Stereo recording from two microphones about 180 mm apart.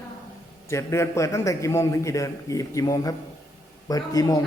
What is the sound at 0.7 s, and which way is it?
A man's voice, 15° left (ahead or behind).